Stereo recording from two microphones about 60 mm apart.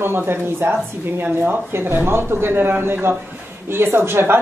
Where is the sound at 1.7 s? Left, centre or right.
Right.